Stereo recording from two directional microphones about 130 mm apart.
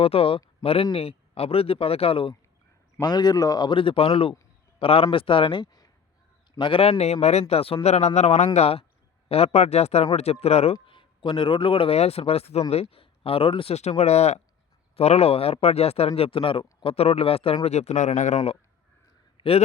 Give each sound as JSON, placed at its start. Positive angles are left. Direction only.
{"t": 0.0, "sound": "speech", "side_deg": 45}
{"t": 3.0, "sound": "a man's voice", "side_deg": 30}
{"t": 8.5, "sound": "a man's voice", "side_deg": 50}
{"t": 10.8, "sound": "speech", "side_deg": 40}
{"t": 19.4, "sound": "a man's voice", "side_deg": 50}